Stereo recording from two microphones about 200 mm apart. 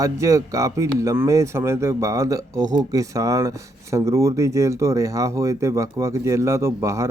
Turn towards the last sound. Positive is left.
turn(degrees=-15)  # may be behind; listen again after turning